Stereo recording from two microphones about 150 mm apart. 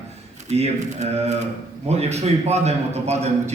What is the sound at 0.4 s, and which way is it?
A man's voice, 45° right (ahead or behind).